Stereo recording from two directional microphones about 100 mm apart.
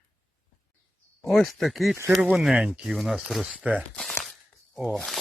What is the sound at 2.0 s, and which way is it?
Speech, 25° right (ahead or behind).